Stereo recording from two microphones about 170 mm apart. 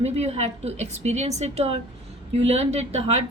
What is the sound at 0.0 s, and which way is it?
A woman's voice, 40° right (ahead or behind).